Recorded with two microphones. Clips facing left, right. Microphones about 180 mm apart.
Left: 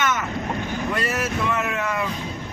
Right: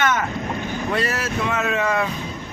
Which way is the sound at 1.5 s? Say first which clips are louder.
Right 4 dB; 90° right.